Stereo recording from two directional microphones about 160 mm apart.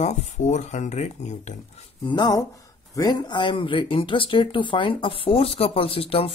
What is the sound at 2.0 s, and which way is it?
Speech, 25° left (ahead or behind).